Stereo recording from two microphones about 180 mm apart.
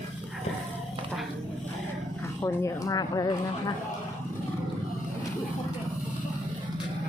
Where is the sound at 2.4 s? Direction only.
15° left (ahead or behind).